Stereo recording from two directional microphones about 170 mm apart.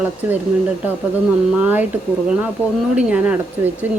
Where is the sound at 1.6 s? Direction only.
10° right (ahead or behind).